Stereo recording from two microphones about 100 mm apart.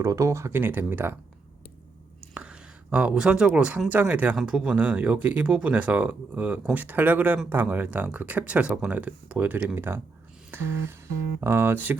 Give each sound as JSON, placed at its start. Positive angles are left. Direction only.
{"t": 0.0, "sound": "speech", "side_deg": -30}
{"t": 2.3, "sound": "speech", "side_deg": -10}